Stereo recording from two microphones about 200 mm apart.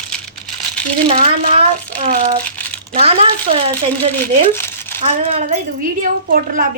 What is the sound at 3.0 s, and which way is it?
A woman's voice, 30° right (ahead or behind).